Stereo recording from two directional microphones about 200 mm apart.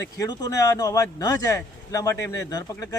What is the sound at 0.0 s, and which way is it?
Speech, 20° left (ahead or behind).